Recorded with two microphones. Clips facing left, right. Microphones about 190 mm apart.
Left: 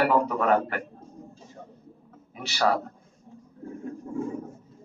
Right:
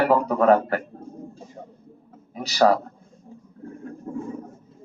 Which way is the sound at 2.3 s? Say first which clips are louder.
Right 6 dB; 40° right (ahead or behind).